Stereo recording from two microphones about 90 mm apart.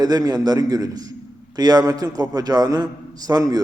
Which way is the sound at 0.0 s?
45° right (ahead or behind).